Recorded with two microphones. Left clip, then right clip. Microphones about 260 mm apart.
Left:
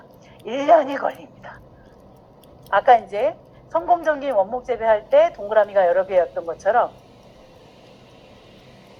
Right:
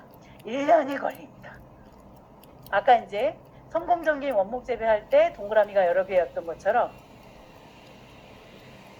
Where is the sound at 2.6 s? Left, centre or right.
Left.